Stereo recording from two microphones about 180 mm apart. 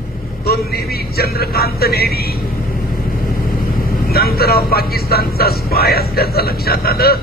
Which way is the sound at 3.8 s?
60° left (ahead or behind).